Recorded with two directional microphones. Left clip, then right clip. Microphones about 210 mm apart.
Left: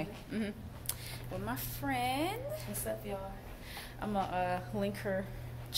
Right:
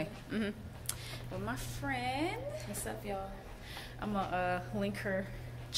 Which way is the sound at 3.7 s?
5° left (ahead or behind).